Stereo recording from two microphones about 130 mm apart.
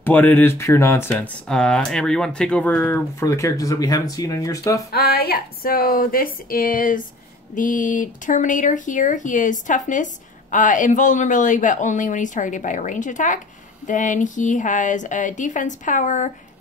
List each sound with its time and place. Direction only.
0.0 s speech: 15° left (ahead or behind)
1.1 s speech: 5° left (ahead or behind); by 4.8 s 25° left (ahead or behind)
5.7 s speech: 90° left; by 16.3 s 75° left (ahead or behind)